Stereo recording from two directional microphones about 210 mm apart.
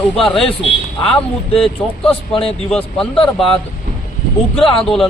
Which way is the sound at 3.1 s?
25° left (ahead or behind).